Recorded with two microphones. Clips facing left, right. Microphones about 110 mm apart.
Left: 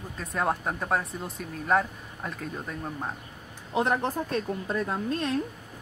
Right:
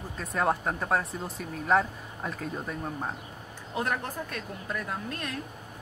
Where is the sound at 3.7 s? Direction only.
25° left (ahead or behind).